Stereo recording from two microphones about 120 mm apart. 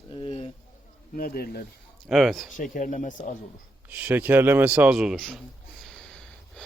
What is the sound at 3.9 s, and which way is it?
Speech, 15° right (ahead or behind).